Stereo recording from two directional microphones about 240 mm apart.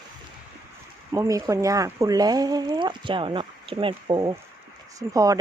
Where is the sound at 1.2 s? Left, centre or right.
Centre.